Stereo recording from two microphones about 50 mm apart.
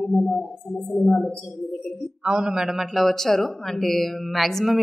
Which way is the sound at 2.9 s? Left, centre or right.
Centre.